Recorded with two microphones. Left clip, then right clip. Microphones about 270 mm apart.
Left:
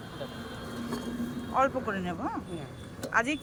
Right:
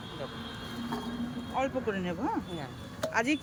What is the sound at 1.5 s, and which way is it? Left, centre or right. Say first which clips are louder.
Speech: left 4 dB; centre.